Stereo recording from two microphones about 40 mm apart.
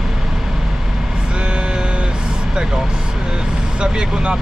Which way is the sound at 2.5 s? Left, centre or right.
Centre.